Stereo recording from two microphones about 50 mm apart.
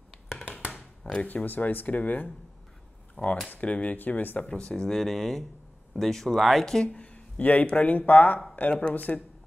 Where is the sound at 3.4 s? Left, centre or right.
Left.